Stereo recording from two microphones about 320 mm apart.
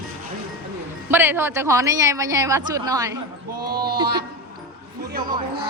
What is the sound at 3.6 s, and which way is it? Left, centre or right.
Speech, right.